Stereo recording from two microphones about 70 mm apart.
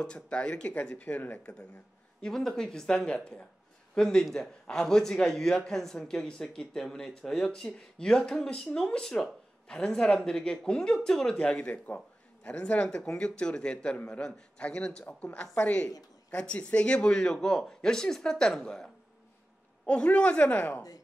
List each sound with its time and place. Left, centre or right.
0.0 s a man's voice: centre
2.2 s a man's voice: centre
19.9 s a woman's voice: centre